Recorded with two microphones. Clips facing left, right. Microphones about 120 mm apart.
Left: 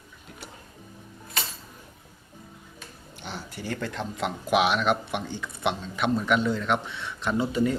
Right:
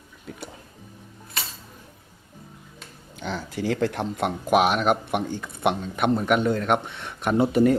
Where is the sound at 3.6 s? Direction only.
90° right.